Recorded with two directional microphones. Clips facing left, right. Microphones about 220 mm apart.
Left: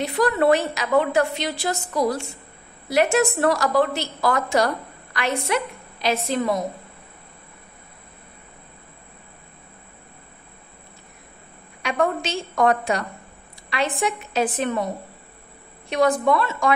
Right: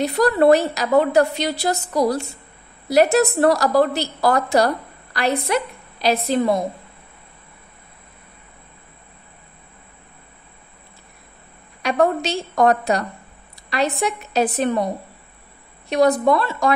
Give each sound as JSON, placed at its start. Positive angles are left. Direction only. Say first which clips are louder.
{"t": 0.0, "sound": "a woman's voice", "louder": "right 4 dB", "side_deg": -40}
{"t": 11.8, "sound": "a woman's voice", "louder": "right 4 dB", "side_deg": -35}
{"t": 15.9, "sound": "a woman's voice", "louder": "right 3 dB", "side_deg": -35}